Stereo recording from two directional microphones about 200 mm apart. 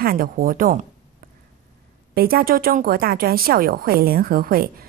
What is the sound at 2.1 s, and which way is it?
A woman's voice, 50° right (ahead or behind).